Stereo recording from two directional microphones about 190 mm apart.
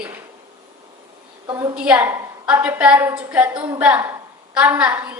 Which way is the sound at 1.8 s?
5° right (ahead or behind).